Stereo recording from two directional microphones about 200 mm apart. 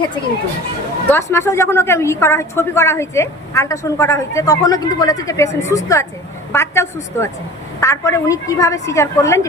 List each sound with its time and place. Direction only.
1.0 s a woman's voice: 10° left (ahead or behind)